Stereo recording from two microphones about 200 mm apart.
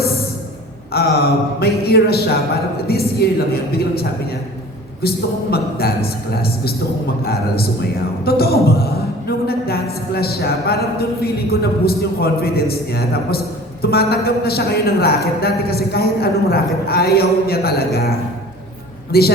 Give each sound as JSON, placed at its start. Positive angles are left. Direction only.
{"t": 0.9, "sound": "a woman's voice", "side_deg": 50}
{"t": 5.0, "sound": "a woman's voice", "side_deg": 50}
{"t": 19.1, "sound": "a woman's voice", "side_deg": 50}